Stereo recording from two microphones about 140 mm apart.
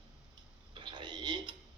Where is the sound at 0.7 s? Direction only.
35° right (ahead or behind).